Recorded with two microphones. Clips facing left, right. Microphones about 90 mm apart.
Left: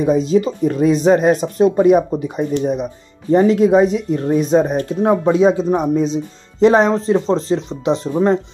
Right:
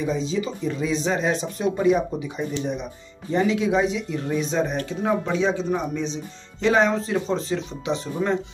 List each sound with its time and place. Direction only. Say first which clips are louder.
0.0 s speech: left 10 dB; 50° left (ahead or behind)